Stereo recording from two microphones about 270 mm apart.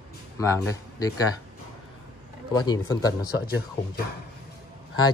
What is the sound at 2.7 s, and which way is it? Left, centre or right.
Speech, centre.